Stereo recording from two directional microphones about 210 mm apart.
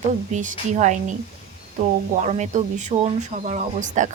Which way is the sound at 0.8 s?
35° right (ahead or behind).